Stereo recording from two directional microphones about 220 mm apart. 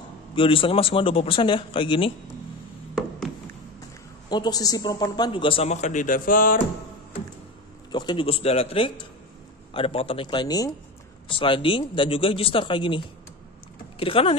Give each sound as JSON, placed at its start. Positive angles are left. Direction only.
{"t": 0.4, "sound": "a man's voice", "side_deg": 25}
{"t": 4.3, "sound": "a man's voice", "side_deg": 20}
{"t": 7.9, "sound": "a man's voice", "side_deg": 20}